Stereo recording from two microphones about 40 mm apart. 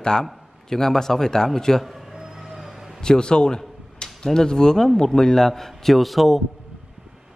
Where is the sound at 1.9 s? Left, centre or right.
Centre.